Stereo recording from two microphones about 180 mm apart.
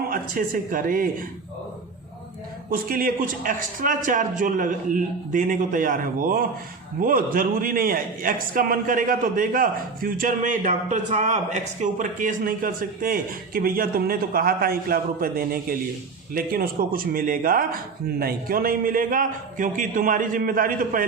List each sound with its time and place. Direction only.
0.1 s a man's voice: 50° right (ahead or behind)
2.6 s a man's voice: 55° right (ahead or behind)